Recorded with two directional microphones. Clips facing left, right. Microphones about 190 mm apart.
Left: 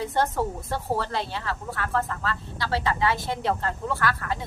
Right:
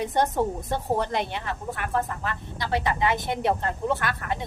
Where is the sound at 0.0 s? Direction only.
20° right (ahead or behind).